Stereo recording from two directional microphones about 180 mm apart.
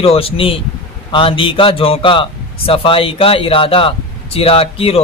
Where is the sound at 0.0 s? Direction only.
35° left (ahead or behind).